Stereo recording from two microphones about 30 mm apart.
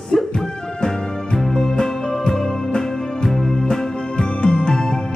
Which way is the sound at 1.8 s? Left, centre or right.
Left.